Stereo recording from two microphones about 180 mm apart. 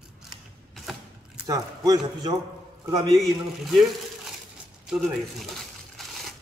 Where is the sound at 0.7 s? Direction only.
Centre (ahead or behind).